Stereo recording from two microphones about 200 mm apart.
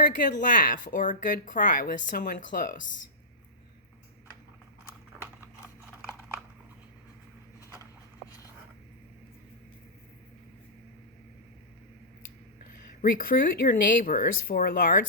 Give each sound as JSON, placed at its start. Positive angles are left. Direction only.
{"t": 0.3, "sound": "speech", "side_deg": 40}
{"t": 13.0, "sound": "speech", "side_deg": 45}